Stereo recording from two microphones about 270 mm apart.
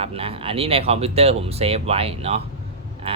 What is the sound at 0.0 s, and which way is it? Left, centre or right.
Speech, right.